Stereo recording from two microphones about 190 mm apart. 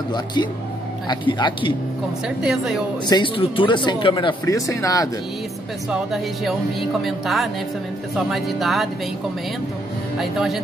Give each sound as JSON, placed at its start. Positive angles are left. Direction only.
{"t": 0.1, "sound": "speech", "side_deg": 25}
{"t": 2.2, "sound": "speech", "side_deg": -5}
{"t": 3.1, "sound": "speech", "side_deg": 25}
{"t": 5.9, "sound": "speech", "side_deg": 0}
{"t": 10.1, "sound": "speech", "side_deg": 0}